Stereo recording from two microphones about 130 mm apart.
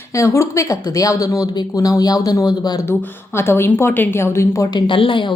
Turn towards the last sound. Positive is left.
turn(degrees=40)  # may be behind; listen again after turning